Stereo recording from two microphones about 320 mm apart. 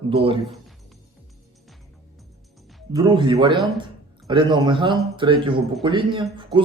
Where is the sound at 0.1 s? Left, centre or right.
Centre.